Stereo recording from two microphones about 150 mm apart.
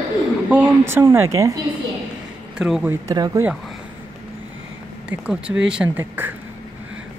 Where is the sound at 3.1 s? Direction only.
25° right (ahead or behind).